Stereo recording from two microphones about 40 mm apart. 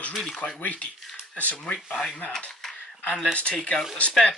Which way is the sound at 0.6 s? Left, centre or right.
Left.